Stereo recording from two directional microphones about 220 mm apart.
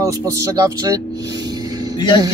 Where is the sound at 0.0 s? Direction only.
15° right (ahead or behind).